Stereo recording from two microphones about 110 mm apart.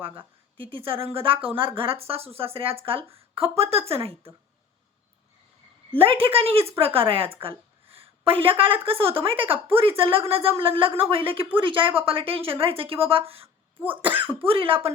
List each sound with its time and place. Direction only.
0.0 s speech: 50° right (ahead or behind)
5.9 s speech: 60° right (ahead or behind)
7.4 s a sound: 55° right (ahead or behind)
8.4 s speech: 55° right (ahead or behind)
13.7 s cough: 15° right (ahead or behind)
14.4 s speech: 55° right (ahead or behind)